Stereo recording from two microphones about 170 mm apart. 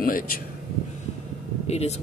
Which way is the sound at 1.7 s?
40° left (ahead or behind).